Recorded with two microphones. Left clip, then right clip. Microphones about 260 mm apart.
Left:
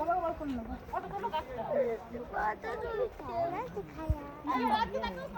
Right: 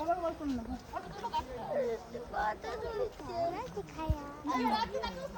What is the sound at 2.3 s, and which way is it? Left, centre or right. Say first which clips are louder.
Speech: left 1 dB; right.